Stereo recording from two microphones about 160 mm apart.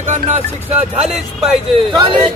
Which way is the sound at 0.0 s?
50° right (ahead or behind).